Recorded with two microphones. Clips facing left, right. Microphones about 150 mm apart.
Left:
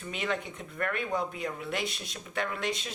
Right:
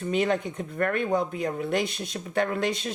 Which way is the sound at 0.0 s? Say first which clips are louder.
Right 8 dB; 40° right (ahead or behind).